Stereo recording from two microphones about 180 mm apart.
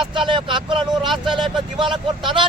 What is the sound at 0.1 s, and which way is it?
Vehicle, 25° right (ahead or behind).